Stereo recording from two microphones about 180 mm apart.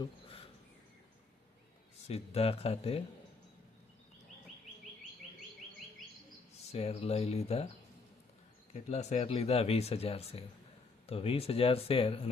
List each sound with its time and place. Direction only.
0.0 s a sound: 30° left (ahead or behind)
2.0 s speech: 35° left (ahead or behind)
6.7 s speech: 35° left (ahead or behind)
8.7 s speech: 40° left (ahead or behind)